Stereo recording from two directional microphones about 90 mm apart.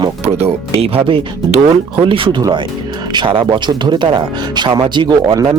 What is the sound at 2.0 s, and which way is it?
Speech, 75° right (ahead or behind).